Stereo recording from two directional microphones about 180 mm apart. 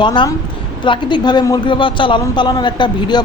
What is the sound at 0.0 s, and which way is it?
A man's voice, 25° left (ahead or behind).